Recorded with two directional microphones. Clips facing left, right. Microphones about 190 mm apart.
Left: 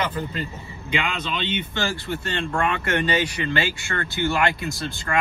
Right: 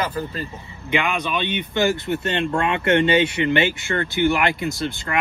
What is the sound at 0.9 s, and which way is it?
Speech, 15° right (ahead or behind).